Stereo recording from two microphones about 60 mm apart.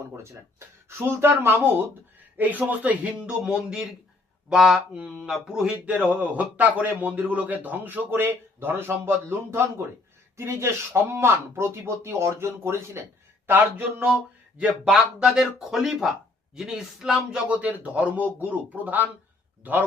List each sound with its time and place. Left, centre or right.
0.1 s speech: right
2.4 s a man's voice: right
3.5 s speech: centre
5.7 s a man's voice: right
13.5 s speech: right
14.8 s speech: centre
17.5 s a man's voice: right